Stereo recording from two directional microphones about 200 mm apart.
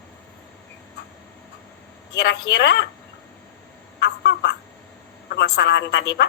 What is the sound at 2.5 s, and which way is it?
Speech, 60° left (ahead or behind).